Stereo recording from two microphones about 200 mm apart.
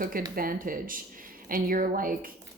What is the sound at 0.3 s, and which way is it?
A woman's voice, 45° right (ahead or behind).